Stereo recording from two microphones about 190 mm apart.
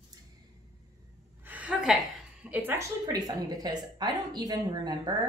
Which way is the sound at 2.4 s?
10° right (ahead or behind).